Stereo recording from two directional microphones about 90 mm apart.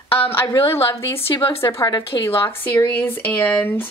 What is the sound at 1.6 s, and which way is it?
Speech, 30° left (ahead or behind).